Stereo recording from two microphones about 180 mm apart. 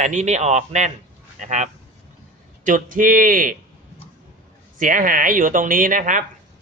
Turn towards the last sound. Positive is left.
turn(degrees=-45)  # may be behind; listen again after turning